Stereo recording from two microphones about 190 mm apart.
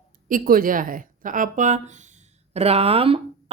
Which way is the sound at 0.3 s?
45° right (ahead or behind).